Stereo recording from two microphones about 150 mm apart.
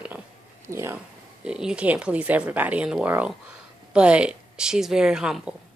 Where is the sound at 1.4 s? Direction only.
5° right (ahead or behind).